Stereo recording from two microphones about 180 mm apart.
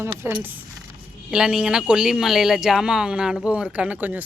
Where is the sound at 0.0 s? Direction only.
15° right (ahead or behind).